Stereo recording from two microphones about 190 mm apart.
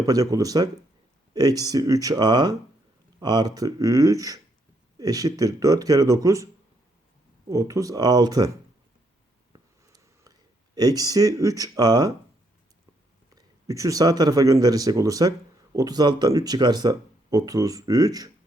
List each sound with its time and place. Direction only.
0.0 s speech: 20° right (ahead or behind)
7.5 s speech: 15° right (ahead or behind)
9.5 s a sound: 20° right (ahead or behind)
10.8 s speech: 20° right (ahead or behind)
13.3 s speech: 15° right (ahead or behind)